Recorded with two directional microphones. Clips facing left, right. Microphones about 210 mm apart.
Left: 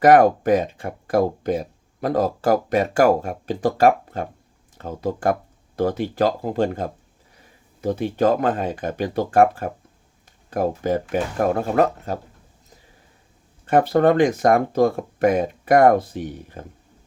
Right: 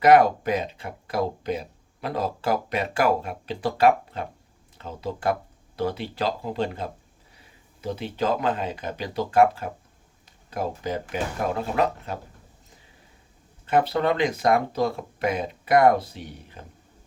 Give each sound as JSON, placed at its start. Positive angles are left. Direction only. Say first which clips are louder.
{"t": 0.0, "sound": "speech", "louder": "left 3 dB", "side_deg": 50}
{"t": 13.7, "sound": "speech", "louder": "left 6 dB", "side_deg": 50}